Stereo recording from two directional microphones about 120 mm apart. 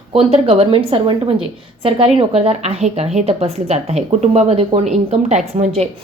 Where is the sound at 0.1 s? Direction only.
50° right (ahead or behind).